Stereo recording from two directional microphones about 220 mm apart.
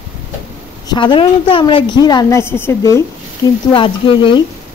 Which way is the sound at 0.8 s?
20° left (ahead or behind).